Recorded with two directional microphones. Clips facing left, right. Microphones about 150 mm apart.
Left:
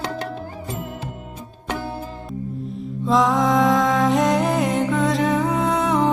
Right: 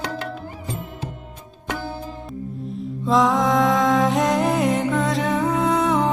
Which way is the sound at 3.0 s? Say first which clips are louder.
Even; centre (ahead or behind).